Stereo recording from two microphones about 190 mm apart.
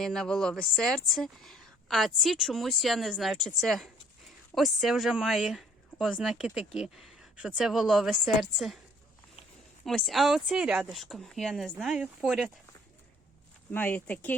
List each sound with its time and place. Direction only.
0.0 s speech: centre (ahead or behind)
9.8 s speech: centre (ahead or behind)
13.7 s speech: 10° left (ahead or behind)